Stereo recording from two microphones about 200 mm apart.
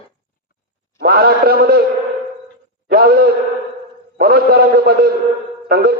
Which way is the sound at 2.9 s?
50° right (ahead or behind).